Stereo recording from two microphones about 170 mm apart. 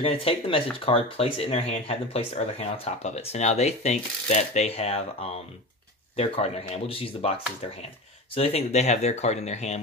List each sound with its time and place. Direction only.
0.0 s speech: 35° left (ahead or behind)
6.1 s speech: 35° left (ahead or behind)
8.4 s speech: 35° left (ahead or behind)